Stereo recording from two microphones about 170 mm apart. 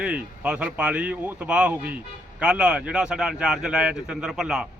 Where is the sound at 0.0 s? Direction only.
5° right (ahead or behind).